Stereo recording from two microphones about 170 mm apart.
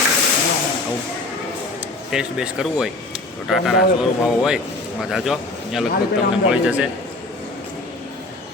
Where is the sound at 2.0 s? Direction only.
5° right (ahead or behind).